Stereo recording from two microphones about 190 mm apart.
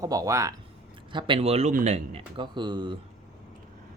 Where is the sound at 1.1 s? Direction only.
30° right (ahead or behind).